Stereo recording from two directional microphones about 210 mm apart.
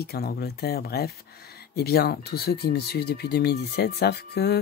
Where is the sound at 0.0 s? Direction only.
50° left (ahead or behind).